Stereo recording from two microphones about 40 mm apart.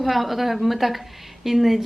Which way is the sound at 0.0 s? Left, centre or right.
Centre.